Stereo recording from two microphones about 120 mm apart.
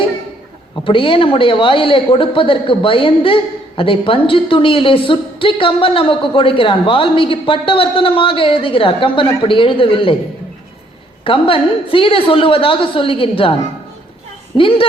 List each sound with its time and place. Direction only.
0.9 s a man's voice: 45° left (ahead or behind)
11.2 s a man's voice: 50° left (ahead or behind)
14.5 s a man's voice: 50° left (ahead or behind)